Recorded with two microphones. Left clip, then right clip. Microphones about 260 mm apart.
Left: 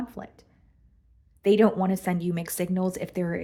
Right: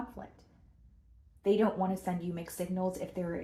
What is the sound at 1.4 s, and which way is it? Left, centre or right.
Speech, left.